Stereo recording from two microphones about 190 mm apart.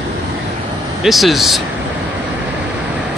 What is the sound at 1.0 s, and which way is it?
Speech, centre (ahead or behind).